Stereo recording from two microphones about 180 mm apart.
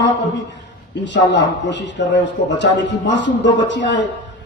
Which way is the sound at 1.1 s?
75° left (ahead or behind).